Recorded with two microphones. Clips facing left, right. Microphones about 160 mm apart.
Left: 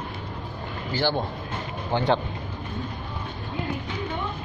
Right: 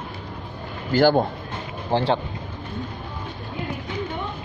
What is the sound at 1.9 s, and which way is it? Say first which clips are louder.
Speech: right 4 dB; 35° right (ahead or behind).